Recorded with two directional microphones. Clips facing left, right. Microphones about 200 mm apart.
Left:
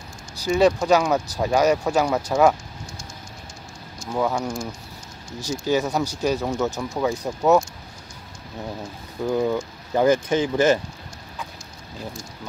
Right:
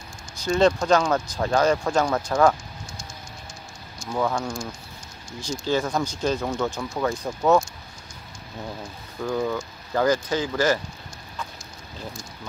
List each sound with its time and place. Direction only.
0.5 s speech: 10° left (ahead or behind)
4.1 s speech: 10° left (ahead or behind)
9.2 s speech: 15° left (ahead or behind)